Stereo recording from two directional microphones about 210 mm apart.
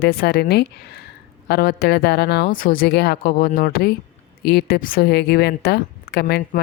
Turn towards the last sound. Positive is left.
turn(degrees=50)  # may be behind; listen again after turning